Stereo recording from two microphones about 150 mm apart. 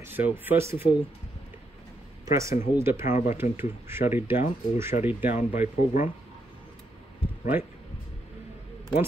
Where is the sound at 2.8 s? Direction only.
15° right (ahead or behind).